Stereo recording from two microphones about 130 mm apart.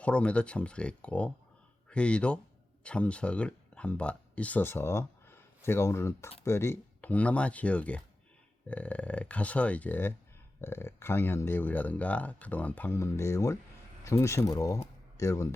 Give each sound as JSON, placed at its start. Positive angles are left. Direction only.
{"t": 0.0, "sound": "speech", "side_deg": 10}